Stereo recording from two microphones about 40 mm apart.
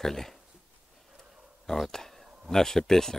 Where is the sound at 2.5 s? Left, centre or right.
Centre.